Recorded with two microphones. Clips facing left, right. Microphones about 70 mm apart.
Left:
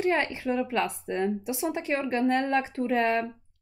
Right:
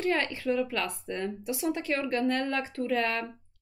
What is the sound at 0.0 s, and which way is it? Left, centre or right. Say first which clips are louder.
A woman's voice: left 2 dB; left.